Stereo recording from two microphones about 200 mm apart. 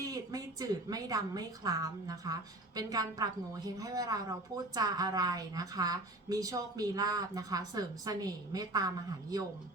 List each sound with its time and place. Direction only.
0.0 s a woman's voice: 15° right (ahead or behind)